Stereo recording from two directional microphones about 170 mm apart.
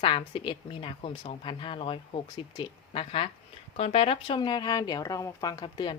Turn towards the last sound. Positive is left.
turn(degrees=25)  # may be behind; listen again after turning